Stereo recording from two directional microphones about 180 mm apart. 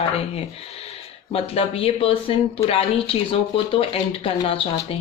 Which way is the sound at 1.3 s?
30° left (ahead or behind).